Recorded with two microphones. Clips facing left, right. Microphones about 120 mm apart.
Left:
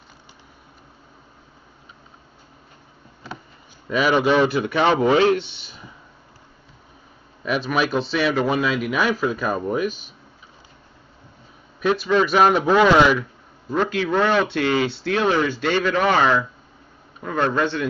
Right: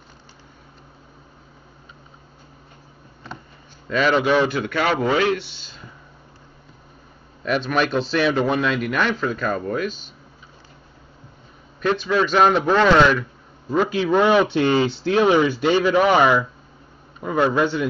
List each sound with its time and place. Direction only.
3.9 s a man's voice: 10° left (ahead or behind)
5.6 s speech: 15° left (ahead or behind)
7.4 s speech: 5° left (ahead or behind)
11.8 s speech: 5° left (ahead or behind)
13.7 s a man's voice: 10° right (ahead or behind)